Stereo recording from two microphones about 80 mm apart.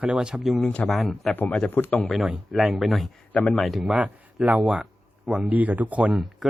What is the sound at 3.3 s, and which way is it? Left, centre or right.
Speech, centre.